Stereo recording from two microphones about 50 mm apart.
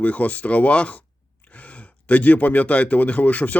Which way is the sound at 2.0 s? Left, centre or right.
Left.